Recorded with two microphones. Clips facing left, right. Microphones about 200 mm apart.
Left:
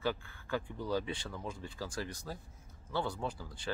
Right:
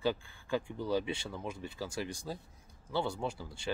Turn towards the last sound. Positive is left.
turn(degrees=-25)  # may be behind; listen again after turning